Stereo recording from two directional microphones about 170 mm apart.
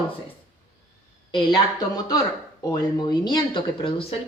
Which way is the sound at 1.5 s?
25° left (ahead or behind).